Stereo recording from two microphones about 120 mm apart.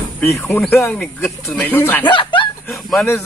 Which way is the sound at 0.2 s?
20° left (ahead or behind).